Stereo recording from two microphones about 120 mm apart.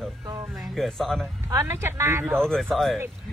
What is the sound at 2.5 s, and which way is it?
Speech, 5° left (ahead or behind).